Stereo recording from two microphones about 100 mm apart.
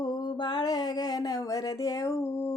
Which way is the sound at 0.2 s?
45° left (ahead or behind).